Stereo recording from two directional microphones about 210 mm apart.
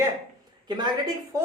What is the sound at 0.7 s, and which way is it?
Speech, 20° right (ahead or behind).